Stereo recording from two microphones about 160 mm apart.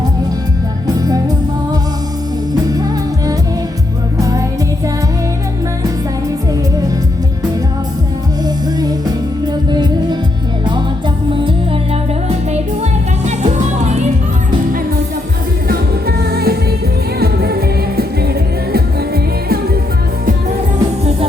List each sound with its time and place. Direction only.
4.2 s music: 20° right (ahead or behind)
8.8 s music: 25° right (ahead or behind)
12.5 s music: 45° right (ahead or behind)
15.7 s music: 80° right